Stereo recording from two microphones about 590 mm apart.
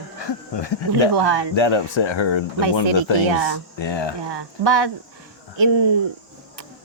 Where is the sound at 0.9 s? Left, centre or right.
Right.